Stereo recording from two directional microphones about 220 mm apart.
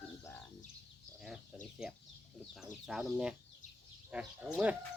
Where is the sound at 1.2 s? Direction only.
5° right (ahead or behind).